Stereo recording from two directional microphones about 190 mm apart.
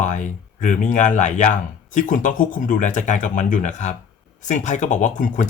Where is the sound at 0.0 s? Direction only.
40° left (ahead or behind).